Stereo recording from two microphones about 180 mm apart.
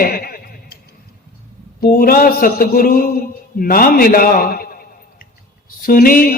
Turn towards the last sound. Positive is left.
turn(degrees=50)  # may be behind; listen again after turning